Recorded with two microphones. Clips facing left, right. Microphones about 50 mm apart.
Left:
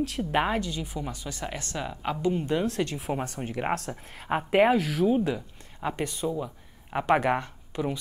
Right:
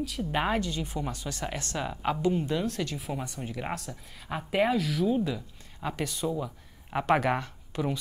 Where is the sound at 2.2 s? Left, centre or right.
Left.